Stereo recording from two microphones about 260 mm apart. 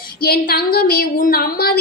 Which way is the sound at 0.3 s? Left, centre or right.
Left.